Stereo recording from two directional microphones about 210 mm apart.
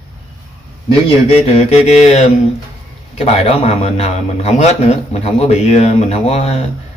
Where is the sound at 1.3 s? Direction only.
30° left (ahead or behind).